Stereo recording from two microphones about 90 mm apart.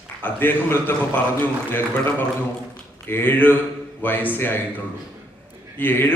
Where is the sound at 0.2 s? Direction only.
25° left (ahead or behind).